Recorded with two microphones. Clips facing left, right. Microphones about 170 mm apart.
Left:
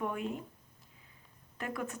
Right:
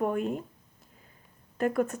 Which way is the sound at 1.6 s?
50° right (ahead or behind).